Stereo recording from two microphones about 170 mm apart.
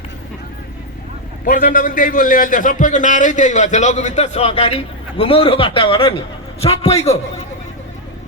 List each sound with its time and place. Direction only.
1.5 s a man's voice: 55° left (ahead or behind); by 7.2 s 40° left (ahead or behind)